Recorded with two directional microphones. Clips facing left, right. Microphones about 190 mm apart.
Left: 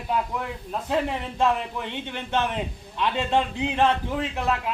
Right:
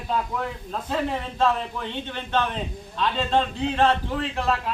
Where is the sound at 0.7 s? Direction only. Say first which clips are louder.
Left 2 dB; 15° left (ahead or behind).